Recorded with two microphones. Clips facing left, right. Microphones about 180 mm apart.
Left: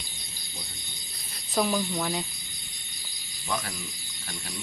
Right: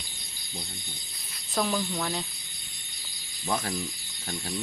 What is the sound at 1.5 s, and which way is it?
Speech, centre (ahead or behind).